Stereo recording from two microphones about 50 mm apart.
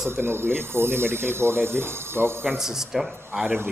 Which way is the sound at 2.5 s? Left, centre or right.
Centre.